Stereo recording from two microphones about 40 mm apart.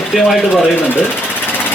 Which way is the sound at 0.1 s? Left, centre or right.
Centre.